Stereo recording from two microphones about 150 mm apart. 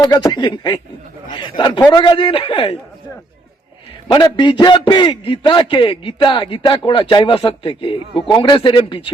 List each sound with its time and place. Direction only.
0.0 s a man's voice: 25° left (ahead or behind)
4.1 s a man's voice: 30° left (ahead or behind)